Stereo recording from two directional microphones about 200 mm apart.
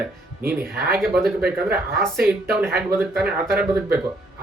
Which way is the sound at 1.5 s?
5° right (ahead or behind).